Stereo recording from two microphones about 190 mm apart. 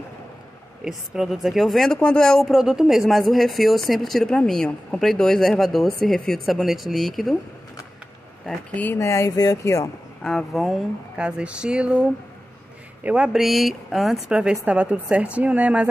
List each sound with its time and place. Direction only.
0.8 s speech: centre (ahead or behind)
8.5 s speech: 10° left (ahead or behind)
10.2 s speech: centre (ahead or behind)